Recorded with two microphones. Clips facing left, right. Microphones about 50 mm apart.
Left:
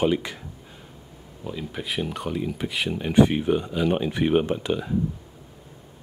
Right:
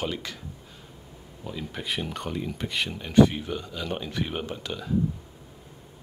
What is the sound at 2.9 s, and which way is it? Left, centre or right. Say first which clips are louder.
Speech: even; centre.